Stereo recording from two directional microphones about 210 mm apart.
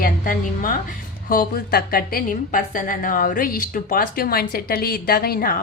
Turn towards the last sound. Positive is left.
turn(degrees=45)  # may be behind; listen again after turning